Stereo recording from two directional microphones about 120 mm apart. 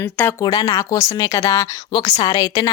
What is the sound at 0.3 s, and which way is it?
Speech, 30° left (ahead or behind).